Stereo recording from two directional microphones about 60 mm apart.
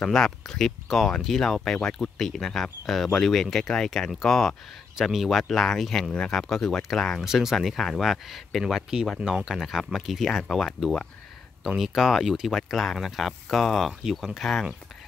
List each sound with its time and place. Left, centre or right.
0.0 s speech: centre